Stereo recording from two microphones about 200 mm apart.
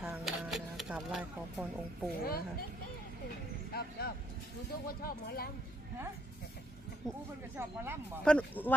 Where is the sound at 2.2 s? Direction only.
50° left (ahead or behind).